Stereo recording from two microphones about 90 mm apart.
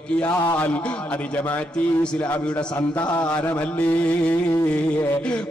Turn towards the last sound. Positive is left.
turn(degrees=15)  # may be behind; listen again after turning